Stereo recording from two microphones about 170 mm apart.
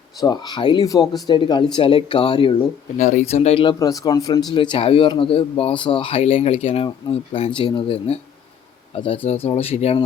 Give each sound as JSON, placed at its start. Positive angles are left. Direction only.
{"t": 0.2, "sound": "speech", "side_deg": 25}
{"t": 3.0, "sound": "speech", "side_deg": 45}